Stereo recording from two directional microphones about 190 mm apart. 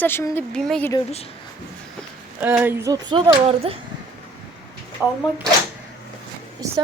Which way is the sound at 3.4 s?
30° right (ahead or behind).